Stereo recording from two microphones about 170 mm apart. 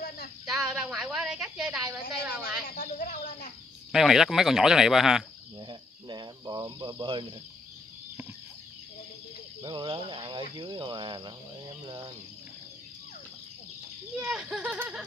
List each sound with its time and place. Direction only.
0.5 s a woman's voice: 5° right (ahead or behind)
2.7 s speech: 55° left (ahead or behind)
3.9 s a woman's voice: centre (ahead or behind)
5.6 s cricket: 25° right (ahead or behind)
9.6 s speech: 25° right (ahead or behind)
14.2 s a woman's voice: 5° right (ahead or behind)